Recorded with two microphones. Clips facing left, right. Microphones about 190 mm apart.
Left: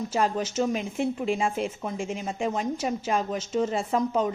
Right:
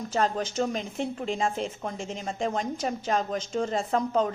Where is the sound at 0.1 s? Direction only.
10° left (ahead or behind).